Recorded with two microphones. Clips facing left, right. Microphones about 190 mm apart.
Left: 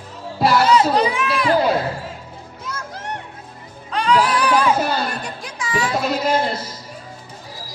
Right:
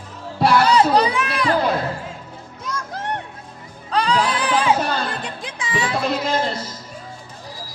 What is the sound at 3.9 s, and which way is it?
Music, 35° right (ahead or behind).